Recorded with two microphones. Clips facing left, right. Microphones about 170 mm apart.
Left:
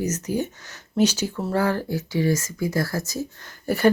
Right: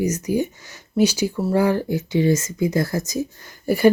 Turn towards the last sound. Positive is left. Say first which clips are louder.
# right 4 dB
turn(degrees=-10)  # may be behind; listen again after turning